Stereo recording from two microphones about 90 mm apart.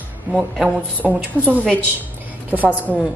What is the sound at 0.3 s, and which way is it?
Speech, 15° right (ahead or behind).